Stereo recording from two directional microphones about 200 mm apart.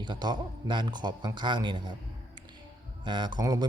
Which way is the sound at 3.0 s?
20° right (ahead or behind).